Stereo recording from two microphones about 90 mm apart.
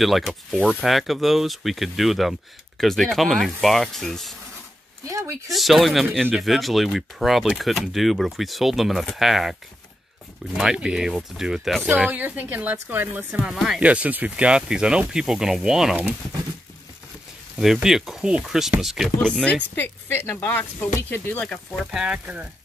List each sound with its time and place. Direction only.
0.0 s speech: centre (ahead or behind)
5.0 s speech: 35° right (ahead or behind)
5.5 s speech: centre (ahead or behind)
10.6 s speech: 5° right (ahead or behind)
12.0 s speech: 20° right (ahead or behind)
17.8 s speech: 5° right (ahead or behind)
19.2 s speech: 10° left (ahead or behind)
19.7 s speech: 25° left (ahead or behind)
21.7 s speech: 5° right (ahead or behind)
22.2 s speech: 20° right (ahead or behind)